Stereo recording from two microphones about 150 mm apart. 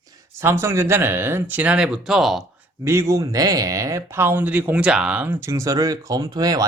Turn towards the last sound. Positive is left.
turn(degrees=-25)  # may be behind; listen again after turning